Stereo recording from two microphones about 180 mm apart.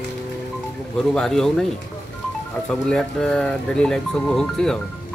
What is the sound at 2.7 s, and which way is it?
Speech, 5° left (ahead or behind).